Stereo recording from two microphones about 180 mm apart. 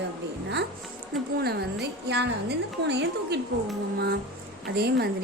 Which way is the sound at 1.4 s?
65° right (ahead or behind).